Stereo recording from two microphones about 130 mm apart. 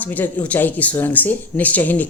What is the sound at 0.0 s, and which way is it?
Speech, 15° left (ahead or behind).